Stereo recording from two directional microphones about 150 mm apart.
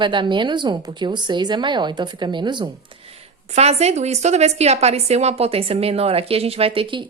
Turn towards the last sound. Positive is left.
turn(degrees=-35)  # may be behind; listen again after turning